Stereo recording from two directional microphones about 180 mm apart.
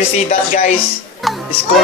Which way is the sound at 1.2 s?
Centre (ahead or behind).